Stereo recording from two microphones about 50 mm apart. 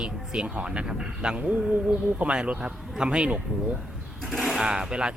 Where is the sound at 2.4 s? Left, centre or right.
Right.